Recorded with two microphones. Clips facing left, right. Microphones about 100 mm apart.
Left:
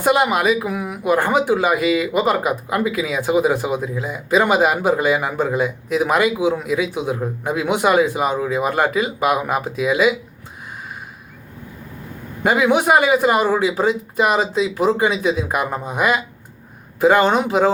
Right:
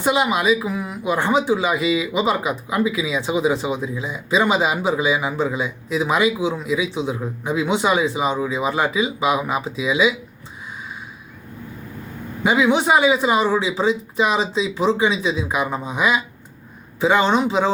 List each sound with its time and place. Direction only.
0.0 s speech: 55° left (ahead or behind)
12.4 s a man's voice: 55° left (ahead or behind)